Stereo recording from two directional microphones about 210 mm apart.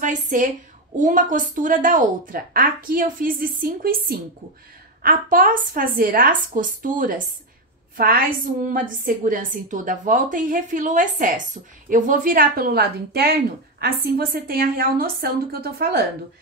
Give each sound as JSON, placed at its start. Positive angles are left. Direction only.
{"t": 0.0, "sound": "a woman's voice", "side_deg": -35}
{"t": 8.6, "sound": "a woman's voice", "side_deg": -40}